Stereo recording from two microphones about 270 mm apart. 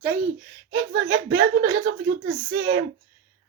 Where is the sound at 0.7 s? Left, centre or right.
Right.